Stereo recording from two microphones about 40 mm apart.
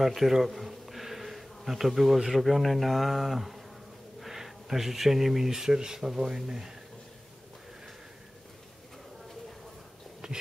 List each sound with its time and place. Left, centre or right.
0.0 s bee: centre
2.1 s speech: centre
10.2 s a sound: centre